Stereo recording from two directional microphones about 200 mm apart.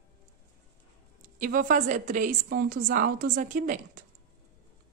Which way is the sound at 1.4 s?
45° right (ahead or behind).